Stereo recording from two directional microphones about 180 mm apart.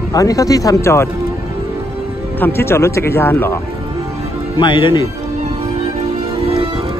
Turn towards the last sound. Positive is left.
turn(degrees=-30)  # may be behind; listen again after turning